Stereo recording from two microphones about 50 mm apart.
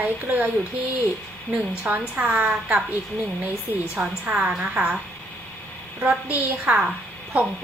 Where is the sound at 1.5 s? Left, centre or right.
Right.